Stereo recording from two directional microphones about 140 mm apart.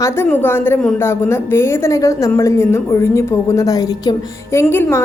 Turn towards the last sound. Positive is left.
turn(degrees=15)  # may be behind; listen again after turning